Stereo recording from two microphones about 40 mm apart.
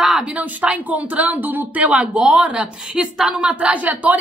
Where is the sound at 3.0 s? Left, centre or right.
Centre; by 4.2 s right.